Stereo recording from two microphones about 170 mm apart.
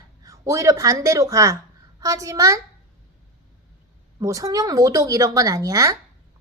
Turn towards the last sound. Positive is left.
turn(degrees=-20)  # may be behind; listen again after turning